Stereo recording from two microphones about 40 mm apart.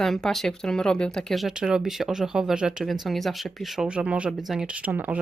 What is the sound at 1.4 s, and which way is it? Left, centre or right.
Speech, centre.